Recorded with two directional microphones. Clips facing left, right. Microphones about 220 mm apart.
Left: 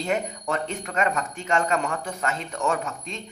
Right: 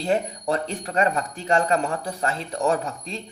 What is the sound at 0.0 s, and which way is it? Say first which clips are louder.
Speech: right 3 dB; 35° right (ahead or behind).